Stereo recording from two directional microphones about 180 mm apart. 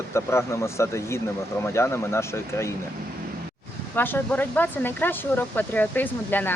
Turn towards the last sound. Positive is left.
turn(degrees=10)  # may be behind; listen again after turning